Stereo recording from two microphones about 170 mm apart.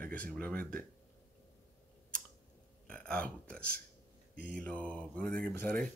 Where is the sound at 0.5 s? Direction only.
55° right (ahead or behind).